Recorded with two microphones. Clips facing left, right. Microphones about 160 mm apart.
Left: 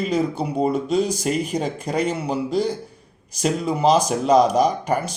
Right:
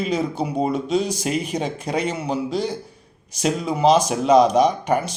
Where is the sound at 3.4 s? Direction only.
Centre (ahead or behind).